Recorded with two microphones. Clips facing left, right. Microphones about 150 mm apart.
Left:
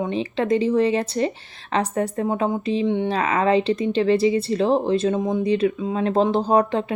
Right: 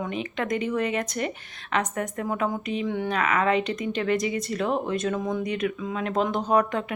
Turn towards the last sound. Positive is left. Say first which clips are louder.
# left 4 dB
turn(degrees=30)  # may be behind; listen again after turning